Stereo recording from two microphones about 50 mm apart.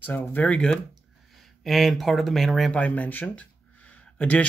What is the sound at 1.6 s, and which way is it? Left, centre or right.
Speech, centre.